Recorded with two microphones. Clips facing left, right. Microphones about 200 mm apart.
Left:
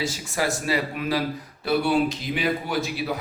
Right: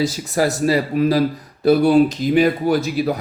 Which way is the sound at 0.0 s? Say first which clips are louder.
Right 8 dB; 40° right (ahead or behind).